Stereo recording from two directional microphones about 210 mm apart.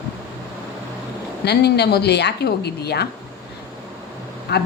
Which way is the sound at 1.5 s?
50° left (ahead or behind).